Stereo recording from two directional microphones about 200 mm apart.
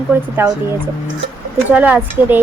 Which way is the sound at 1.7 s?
10° right (ahead or behind).